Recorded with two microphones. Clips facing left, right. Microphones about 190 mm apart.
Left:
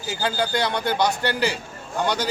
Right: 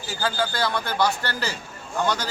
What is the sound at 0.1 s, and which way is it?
A man's voice, 20° left (ahead or behind).